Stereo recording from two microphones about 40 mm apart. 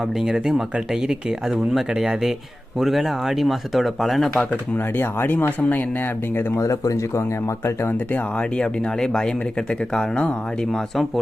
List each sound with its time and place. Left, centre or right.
0.2 s speech: centre
2.0 s speech: centre
4.9 s speech: left
5.5 s speech: left
8.4 s speech: left
9.0 s speech: centre